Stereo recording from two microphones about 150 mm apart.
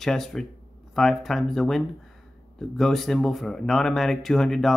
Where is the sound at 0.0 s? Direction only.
Centre (ahead or behind).